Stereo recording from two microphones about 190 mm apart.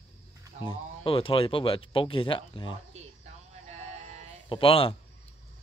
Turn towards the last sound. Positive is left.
turn(degrees=30)  # may be behind; listen again after turning